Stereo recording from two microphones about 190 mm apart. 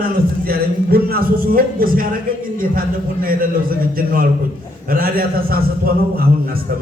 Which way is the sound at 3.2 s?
50° right (ahead or behind).